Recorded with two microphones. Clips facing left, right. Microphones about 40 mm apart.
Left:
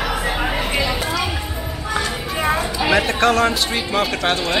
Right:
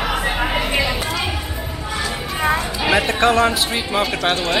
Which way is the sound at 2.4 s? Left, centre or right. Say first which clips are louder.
Even; centre.